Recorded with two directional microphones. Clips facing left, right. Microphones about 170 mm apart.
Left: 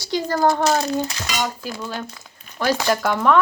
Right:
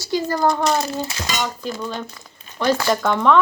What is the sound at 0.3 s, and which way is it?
Child singing, centre (ahead or behind).